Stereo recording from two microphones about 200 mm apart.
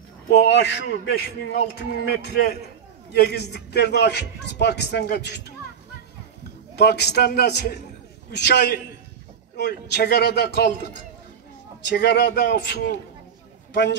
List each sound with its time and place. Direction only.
0.3 s a man's voice: 55° left (ahead or behind)
6.7 s a man's voice: 55° left (ahead or behind)
11.9 s a man's voice: 60° left (ahead or behind)